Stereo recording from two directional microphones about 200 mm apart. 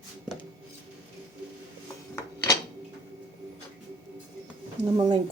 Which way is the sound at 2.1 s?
15° left (ahead or behind).